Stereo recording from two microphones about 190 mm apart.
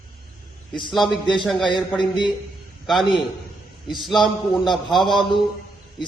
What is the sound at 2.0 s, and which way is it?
Speech, 25° left (ahead or behind).